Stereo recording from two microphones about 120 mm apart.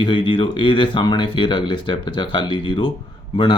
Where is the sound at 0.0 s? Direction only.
45° left (ahead or behind).